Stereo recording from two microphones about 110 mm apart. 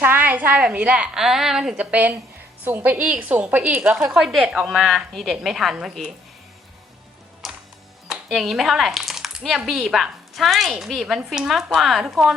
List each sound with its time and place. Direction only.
0.0 s a woman's voice: 15° right (ahead or behind)
7.4 s music: centre (ahead or behind)
8.0 s speech: centre (ahead or behind)